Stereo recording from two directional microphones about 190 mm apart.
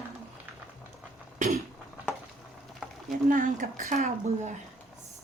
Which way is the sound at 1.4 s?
40° right (ahead or behind).